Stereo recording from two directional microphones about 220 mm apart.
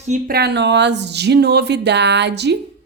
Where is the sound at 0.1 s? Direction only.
45° right (ahead or behind).